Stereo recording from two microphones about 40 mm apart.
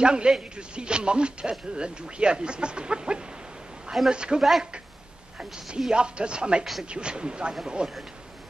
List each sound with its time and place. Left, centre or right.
0.0 s speech: right
4.4 s speech: centre
5.9 s speech: right
6.6 s speech: centre
6.9 s speech: right